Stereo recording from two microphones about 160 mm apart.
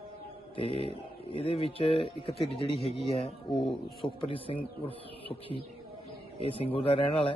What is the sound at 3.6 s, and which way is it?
Speech, 35° left (ahead or behind).